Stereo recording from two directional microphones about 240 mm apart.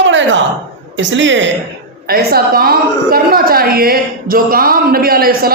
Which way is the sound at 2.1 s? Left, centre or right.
Right.